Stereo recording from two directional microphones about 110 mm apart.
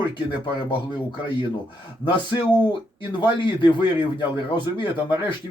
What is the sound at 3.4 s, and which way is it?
A man's voice, 45° left (ahead or behind).